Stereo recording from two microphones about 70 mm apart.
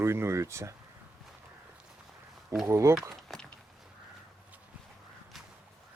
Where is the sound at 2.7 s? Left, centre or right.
Right.